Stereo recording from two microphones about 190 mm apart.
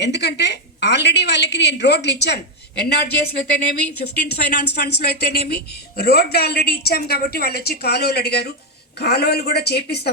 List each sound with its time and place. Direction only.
0.0 s speech: 60° left (ahead or behind)